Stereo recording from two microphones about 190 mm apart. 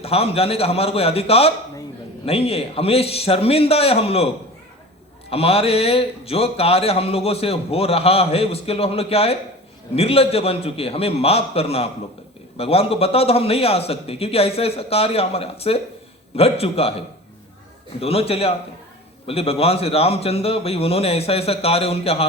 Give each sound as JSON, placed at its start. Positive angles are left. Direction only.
{"t": 0.0, "sound": "a man's voice", "side_deg": 30}
{"t": 5.3, "sound": "a man's voice", "side_deg": 30}
{"t": 18.0, "sound": "a man's voice", "side_deg": 30}